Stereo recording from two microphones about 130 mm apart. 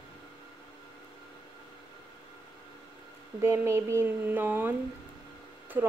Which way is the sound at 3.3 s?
20° right (ahead or behind).